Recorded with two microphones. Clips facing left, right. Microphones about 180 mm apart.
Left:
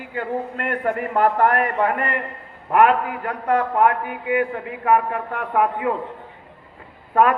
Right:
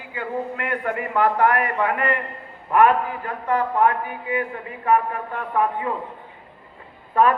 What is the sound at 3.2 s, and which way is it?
Speech, 65° left (ahead or behind).